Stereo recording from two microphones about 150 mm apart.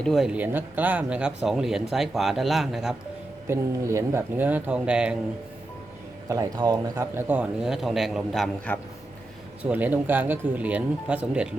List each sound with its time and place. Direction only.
0.0 s speech: centre (ahead or behind)
3.5 s speech: 20° right (ahead or behind)
6.2 s speech: 20° right (ahead or behind)
7.0 s speech: 15° right (ahead or behind)
8.7 s a man's voice: 10° left (ahead or behind)
9.6 s speech: 10° right (ahead or behind)